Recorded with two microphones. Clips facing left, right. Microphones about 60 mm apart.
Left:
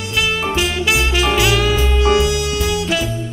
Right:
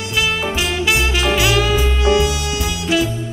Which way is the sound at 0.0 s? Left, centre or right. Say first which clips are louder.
Even; centre.